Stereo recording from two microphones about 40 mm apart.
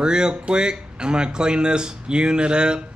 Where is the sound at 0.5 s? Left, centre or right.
Right.